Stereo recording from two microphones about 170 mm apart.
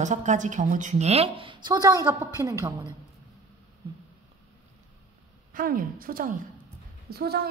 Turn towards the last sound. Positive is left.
turn(degrees=-65)  # may be behind; listen again after turning